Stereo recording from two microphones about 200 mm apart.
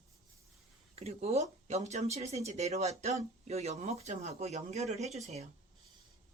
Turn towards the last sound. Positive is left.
turn(degrees=-30)  # may be behind; listen again after turning